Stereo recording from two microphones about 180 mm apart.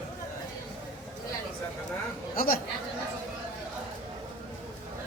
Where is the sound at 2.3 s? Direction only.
50° left (ahead or behind).